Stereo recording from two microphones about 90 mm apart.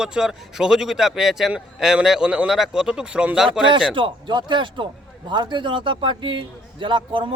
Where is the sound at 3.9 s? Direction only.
65° right (ahead or behind).